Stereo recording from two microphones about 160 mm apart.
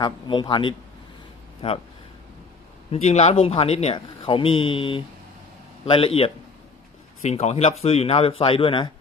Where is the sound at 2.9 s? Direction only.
45° left (ahead or behind).